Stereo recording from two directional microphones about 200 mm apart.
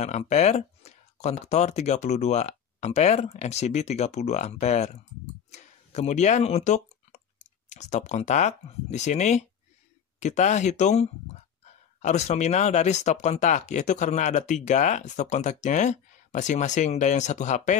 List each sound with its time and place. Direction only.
0.0 s speech: 35° left (ahead or behind)